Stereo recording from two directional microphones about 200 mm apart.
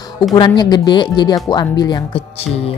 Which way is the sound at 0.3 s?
20° left (ahead or behind).